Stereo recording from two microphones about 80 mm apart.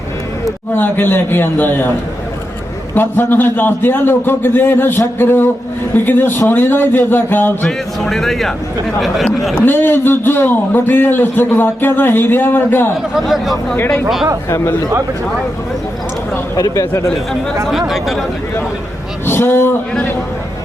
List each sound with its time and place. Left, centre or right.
0.7 s a man's voice: left
2.9 s a man's voice: left
8.0 s speech: centre
9.6 s a man's voice: left
13.1 s speech: centre
13.7 s a man's voice: left
16.7 s a man's voice: left
17.7 s speech: centre
19.2 s a man's voice: left